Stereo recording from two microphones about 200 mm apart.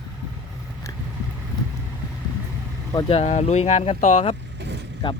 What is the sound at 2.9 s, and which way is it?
Speech, 20° left (ahead or behind).